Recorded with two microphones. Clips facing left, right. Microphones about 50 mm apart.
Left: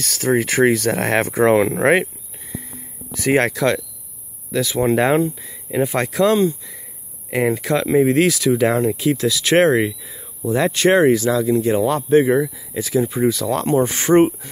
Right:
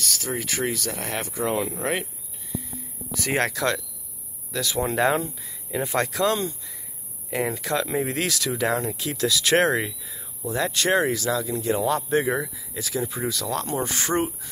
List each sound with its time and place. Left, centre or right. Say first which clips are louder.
0.0 s speech: left 11 dB; left
3.2 s speech: left 7 dB; centre
9.8 s speech: left 9 dB; left
10.1 s a sound: left 7 dB; centre
10.5 s speech: left 7 dB; left
14.1 s speech: left 13 dB; left